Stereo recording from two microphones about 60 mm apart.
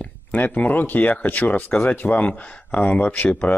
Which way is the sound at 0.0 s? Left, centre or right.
Left.